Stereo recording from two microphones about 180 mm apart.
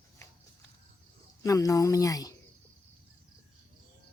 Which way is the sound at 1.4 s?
20° left (ahead or behind).